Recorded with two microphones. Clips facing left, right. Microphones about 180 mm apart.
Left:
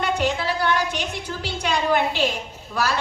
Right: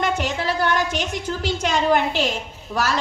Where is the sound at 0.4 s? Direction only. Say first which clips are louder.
Right 1 dB; 45° right (ahead or behind).